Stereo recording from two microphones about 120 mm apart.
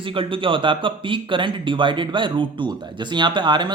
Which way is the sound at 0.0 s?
45° right (ahead or behind).